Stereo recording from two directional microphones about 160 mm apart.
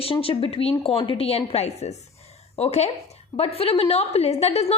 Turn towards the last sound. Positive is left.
turn(degrees=40)  # may be behind; listen again after turning